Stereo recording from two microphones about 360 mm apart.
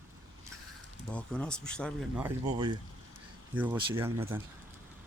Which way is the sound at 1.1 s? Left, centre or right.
Centre.